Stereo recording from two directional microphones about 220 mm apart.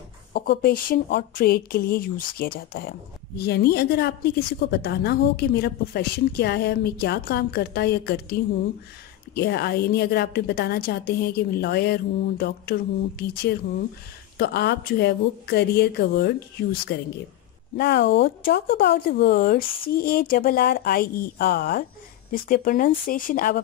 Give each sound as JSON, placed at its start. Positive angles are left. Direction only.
{"t": 0.3, "sound": "speech", "side_deg": 45}
{"t": 14.4, "sound": "speech", "side_deg": 45}